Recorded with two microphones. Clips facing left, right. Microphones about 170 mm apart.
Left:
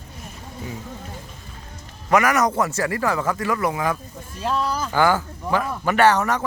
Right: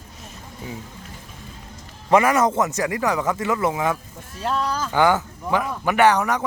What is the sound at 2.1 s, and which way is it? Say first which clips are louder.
Speech: right 1 dB; 25° right (ahead or behind).